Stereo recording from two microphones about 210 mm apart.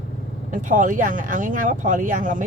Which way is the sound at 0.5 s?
40° right (ahead or behind).